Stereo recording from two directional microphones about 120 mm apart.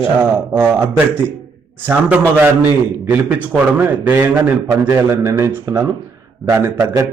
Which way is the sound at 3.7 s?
15° right (ahead or behind).